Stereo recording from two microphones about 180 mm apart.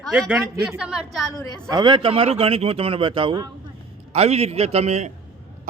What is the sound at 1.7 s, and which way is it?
A man's voice, 25° right (ahead or behind).